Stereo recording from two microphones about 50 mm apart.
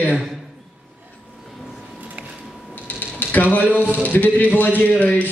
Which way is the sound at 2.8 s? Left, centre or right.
Left.